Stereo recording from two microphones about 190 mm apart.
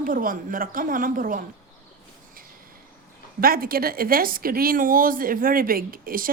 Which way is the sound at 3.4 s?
50° right (ahead or behind).